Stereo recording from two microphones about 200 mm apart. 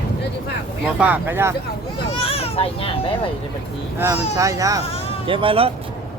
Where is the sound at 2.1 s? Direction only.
30° left (ahead or behind).